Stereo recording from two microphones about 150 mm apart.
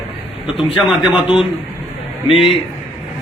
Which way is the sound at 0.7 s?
5° right (ahead or behind).